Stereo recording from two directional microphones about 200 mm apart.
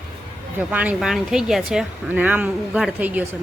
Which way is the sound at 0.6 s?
5° right (ahead or behind).